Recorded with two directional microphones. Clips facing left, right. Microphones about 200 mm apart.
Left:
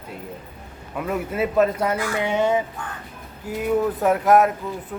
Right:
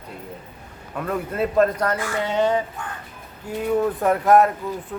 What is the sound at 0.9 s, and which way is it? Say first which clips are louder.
Speech: even; 5° left (ahead or behind).